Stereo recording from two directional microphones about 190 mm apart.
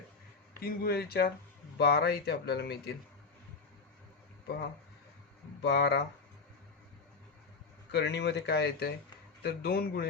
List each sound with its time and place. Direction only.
0.6 s speech: 55° left (ahead or behind)
5.6 s speech: 65° left (ahead or behind)
7.9 s speech: 65° left (ahead or behind)